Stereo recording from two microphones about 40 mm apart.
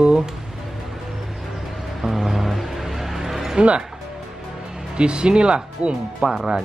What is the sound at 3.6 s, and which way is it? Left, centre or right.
Speech, right.